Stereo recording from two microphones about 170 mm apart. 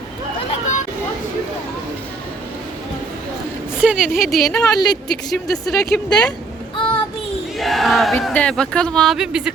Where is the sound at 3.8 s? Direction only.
5° right (ahead or behind).